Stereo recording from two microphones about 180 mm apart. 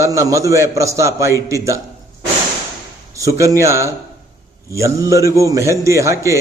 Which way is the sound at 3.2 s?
15° right (ahead or behind).